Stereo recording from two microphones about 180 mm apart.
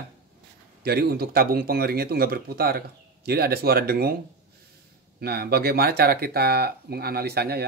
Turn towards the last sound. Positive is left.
turn(degrees=-60)  # may be behind; listen again after turning